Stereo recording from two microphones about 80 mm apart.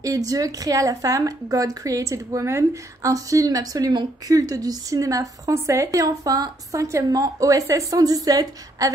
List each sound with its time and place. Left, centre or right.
0.0 s a woman's voice: right